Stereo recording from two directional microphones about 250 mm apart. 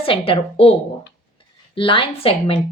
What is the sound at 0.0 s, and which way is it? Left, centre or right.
Speech, left.